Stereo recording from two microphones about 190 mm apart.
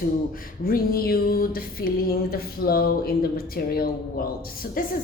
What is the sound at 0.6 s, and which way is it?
A woman's voice, 50° left (ahead or behind).